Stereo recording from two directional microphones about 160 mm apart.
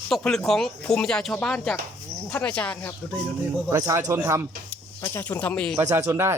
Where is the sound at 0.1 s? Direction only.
5° left (ahead or behind).